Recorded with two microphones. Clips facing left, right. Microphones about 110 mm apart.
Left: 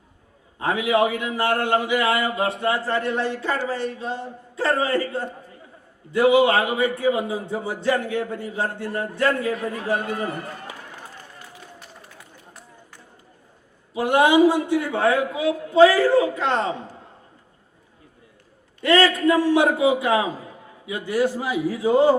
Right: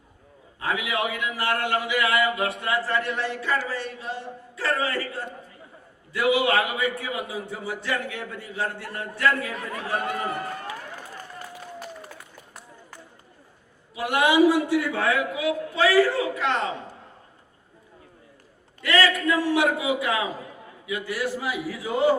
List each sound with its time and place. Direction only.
0.6 s a man's voice: 30° left (ahead or behind)
13.9 s a man's voice: 30° left (ahead or behind)
18.8 s a man's voice: 30° left (ahead or behind)